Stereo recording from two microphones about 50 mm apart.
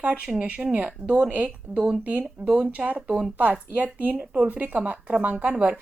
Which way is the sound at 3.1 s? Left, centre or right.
Centre.